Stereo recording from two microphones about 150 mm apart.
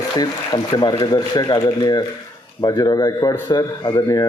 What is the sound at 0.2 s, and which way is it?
Speech, 25° left (ahead or behind).